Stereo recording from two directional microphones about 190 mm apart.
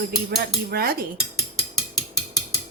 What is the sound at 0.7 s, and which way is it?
Dishes, 50° right (ahead or behind).